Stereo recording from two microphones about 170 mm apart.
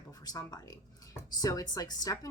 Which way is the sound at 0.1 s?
20° left (ahead or behind).